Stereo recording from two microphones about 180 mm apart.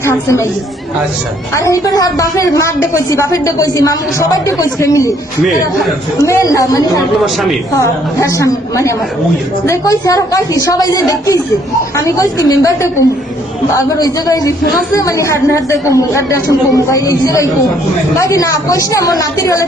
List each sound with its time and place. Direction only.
0.0 s a woman's voice: 15° left (ahead or behind)
1.5 s a woman's voice: 15° left (ahead or behind)
6.2 s a woman's voice: 20° left (ahead or behind)
8.4 s a woman's voice: 15° left (ahead or behind)